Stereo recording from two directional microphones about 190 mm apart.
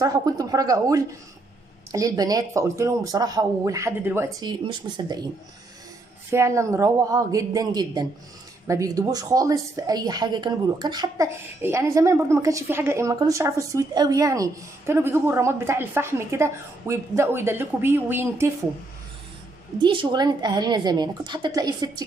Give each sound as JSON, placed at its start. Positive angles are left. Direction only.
{"t": 0.0, "sound": "a woman's voice", "side_deg": -20}
{"t": 6.3, "sound": "a woman's voice", "side_deg": -15}
{"t": 19.8, "sound": "a woman's voice", "side_deg": -25}